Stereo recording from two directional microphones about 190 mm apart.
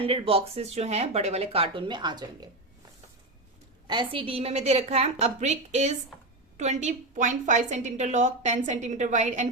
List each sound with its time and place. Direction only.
0.0 s a woman's voice: 30° right (ahead or behind)
3.8 s a woman's voice: 25° right (ahead or behind)